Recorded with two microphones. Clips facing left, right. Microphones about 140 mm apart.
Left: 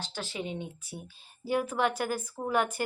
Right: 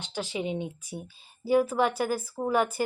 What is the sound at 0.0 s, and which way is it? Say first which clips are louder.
Speech: right 5 dB; 15° right (ahead or behind).